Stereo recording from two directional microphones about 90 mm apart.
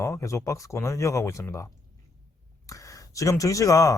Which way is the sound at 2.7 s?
40° left (ahead or behind).